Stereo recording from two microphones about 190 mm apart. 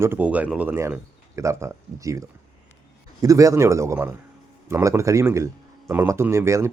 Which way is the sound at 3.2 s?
15° right (ahead or behind).